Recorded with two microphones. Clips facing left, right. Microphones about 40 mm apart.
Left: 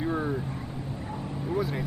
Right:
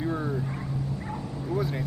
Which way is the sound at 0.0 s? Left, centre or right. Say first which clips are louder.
Left 1 dB; centre.